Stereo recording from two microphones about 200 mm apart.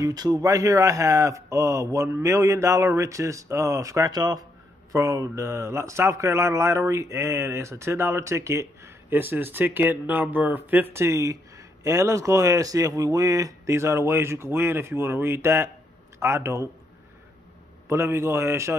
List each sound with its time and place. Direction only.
0.0 s speech: 20° right (ahead or behind)
17.8 s speech: 15° right (ahead or behind)